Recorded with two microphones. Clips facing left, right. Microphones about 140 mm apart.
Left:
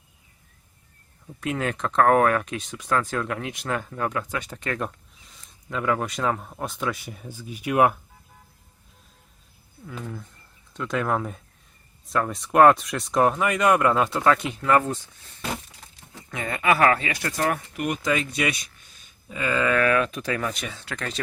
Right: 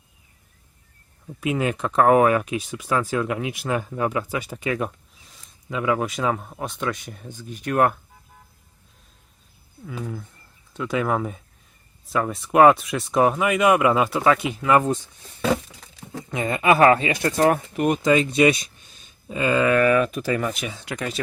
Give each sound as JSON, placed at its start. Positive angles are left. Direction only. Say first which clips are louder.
{"t": 1.4, "sound": "speech", "louder": "right 3 dB", "side_deg": -10}
{"t": 9.8, "sound": "speech", "louder": "right 3 dB", "side_deg": -5}
{"t": 16.3, "sound": "speech", "louder": "right 4 dB", "side_deg": -20}